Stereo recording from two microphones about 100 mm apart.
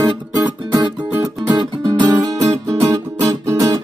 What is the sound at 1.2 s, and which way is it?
Music, 40° right (ahead or behind).